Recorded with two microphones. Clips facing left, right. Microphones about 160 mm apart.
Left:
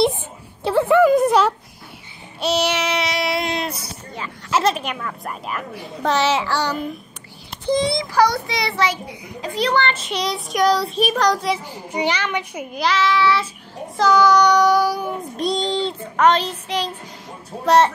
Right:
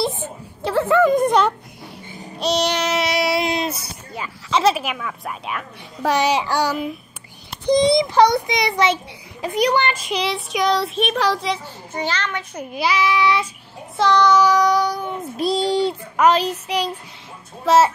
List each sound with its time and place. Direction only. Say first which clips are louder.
0.7 s speech: left 2 dB; 15° left (ahead or behind)
2.4 s child singing: even; 5° left (ahead or behind)
4.5 s speech: right 2 dB; 5° left (ahead or behind)
4.7 s child singing: right 1 dB; 5° right (ahead or behind)
6.0 s a child's voice: even; 15° right (ahead or behind); by 11.6 s centre (ahead or behind)
11.9 s a child's voice: left 3 dB; 15° left (ahead or behind)
12.7 s a child's voice: even; 10° right (ahead or behind)
13.9 s child singing: left 1 dB; centre (ahead or behind)